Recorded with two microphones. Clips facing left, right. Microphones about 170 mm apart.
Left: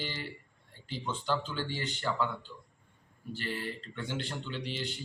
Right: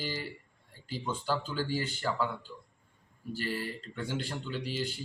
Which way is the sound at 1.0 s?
10° right (ahead or behind).